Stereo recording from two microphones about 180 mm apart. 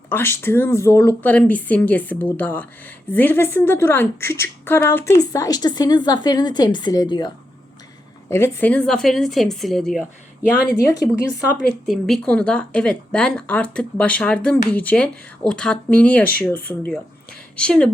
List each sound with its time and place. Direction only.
0.1 s speech: 10° left (ahead or behind)
8.3 s speech: 15° left (ahead or behind)
10.8 s speech: 20° left (ahead or behind)
11.9 s speech: centre (ahead or behind)